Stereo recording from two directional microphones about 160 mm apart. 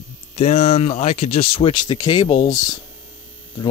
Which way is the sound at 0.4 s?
40° left (ahead or behind).